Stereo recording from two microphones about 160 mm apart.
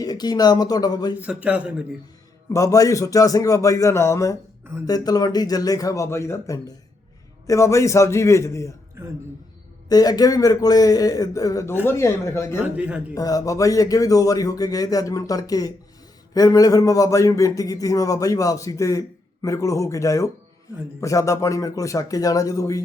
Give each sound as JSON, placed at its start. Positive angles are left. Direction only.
{"t": 0.0, "sound": "a man's voice", "side_deg": 25}
{"t": 1.2, "sound": "a man's voice", "side_deg": -10}
{"t": 2.5, "sound": "a man's voice", "side_deg": 20}
{"t": 9.0, "sound": "a man's voice", "side_deg": -15}
{"t": 9.9, "sound": "a man's voice", "side_deg": 25}
{"t": 12.7, "sound": "a man's voice", "side_deg": -10}
{"t": 13.1, "sound": "a man's voice", "side_deg": 20}